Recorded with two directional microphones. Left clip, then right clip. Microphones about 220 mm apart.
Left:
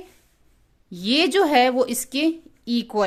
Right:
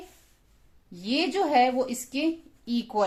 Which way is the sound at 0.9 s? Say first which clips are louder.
Left 8 dB; 40° left (ahead or behind).